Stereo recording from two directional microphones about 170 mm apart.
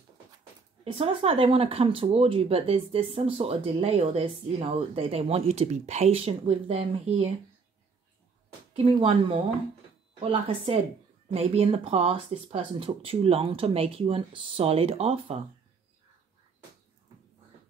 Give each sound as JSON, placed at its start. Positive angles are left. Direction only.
{"t": 0.9, "sound": "speech", "side_deg": -35}
{"t": 8.7, "sound": "speech", "side_deg": -30}